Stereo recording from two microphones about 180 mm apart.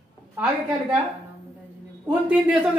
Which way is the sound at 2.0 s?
5° right (ahead or behind).